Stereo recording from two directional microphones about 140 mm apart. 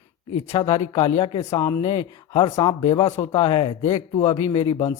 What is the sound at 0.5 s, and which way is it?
Speech, 35° left (ahead or behind).